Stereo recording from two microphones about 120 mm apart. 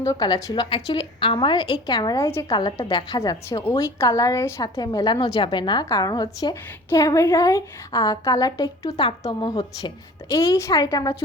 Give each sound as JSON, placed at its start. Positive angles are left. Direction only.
{"t": 0.0, "sound": "a woman's voice", "side_deg": 30}
{"t": 0.6, "sound": "a woman's voice", "side_deg": 40}
{"t": 2.2, "sound": "a woman's voice", "side_deg": 20}
{"t": 2.5, "sound": "a woman's voice", "side_deg": 40}
{"t": 3.2, "sound": "a woman's voice", "side_deg": 30}
{"t": 10.2, "sound": "a woman's voice", "side_deg": 25}